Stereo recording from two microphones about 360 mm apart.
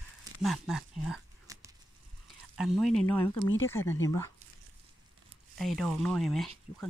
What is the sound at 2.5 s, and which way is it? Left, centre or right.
Speech, centre.